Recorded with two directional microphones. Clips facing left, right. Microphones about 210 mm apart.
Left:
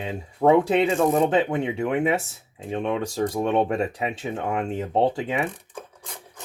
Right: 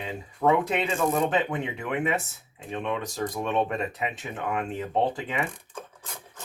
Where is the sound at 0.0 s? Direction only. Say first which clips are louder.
Left 5 dB; 30° left (ahead or behind).